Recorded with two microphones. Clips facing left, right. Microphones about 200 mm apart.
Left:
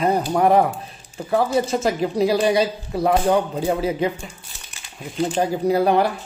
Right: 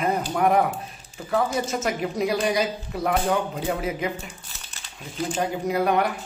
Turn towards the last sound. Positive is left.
turn(degrees=35)  # may be behind; listen again after turning